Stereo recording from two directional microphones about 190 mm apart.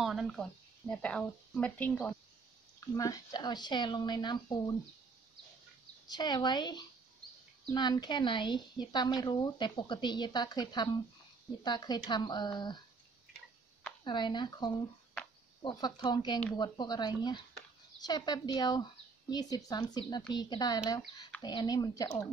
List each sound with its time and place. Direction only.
0.0 s speech: centre (ahead or behind)
2.9 s a woman's voice: 20° left (ahead or behind)
6.0 s a woman's voice: 20° left (ahead or behind)
14.0 s a woman's voice: 25° left (ahead or behind)